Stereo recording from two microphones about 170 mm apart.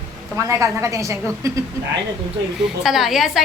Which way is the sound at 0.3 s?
15° right (ahead or behind).